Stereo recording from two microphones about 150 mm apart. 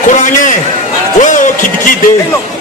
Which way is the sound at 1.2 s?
55° left (ahead or behind).